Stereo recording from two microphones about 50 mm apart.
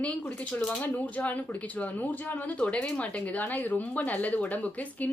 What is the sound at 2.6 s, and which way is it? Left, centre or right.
A woman's voice, left.